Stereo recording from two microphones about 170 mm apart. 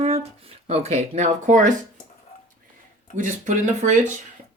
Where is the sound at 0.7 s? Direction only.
40° right (ahead or behind).